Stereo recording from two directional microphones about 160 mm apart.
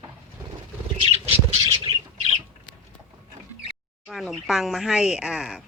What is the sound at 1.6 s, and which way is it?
Squawk, 20° right (ahead or behind).